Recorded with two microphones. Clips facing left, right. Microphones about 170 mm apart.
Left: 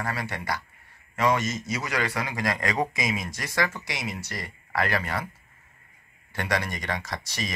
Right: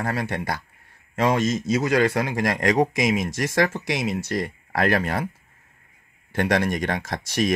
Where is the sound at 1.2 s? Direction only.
90° right.